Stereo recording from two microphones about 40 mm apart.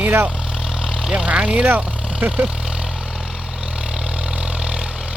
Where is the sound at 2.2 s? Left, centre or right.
Right.